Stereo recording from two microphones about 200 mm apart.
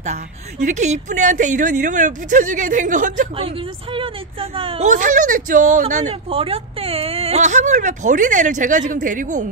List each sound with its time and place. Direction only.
0.0 s speech: 35° right (ahead or behind)
3.3 s speech: 25° right (ahead or behind)